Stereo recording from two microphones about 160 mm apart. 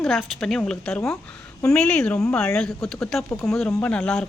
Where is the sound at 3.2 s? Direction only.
15° left (ahead or behind).